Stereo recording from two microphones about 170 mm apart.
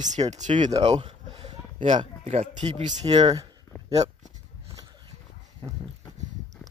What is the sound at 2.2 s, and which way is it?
Speech, 40° right (ahead or behind).